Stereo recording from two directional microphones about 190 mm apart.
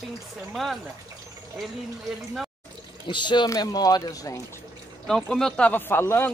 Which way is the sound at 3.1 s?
25° left (ahead or behind).